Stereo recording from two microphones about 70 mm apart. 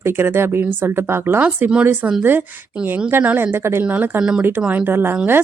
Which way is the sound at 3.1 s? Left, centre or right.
Right.